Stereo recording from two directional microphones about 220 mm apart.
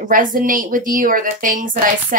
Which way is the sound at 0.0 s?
35° right (ahead or behind).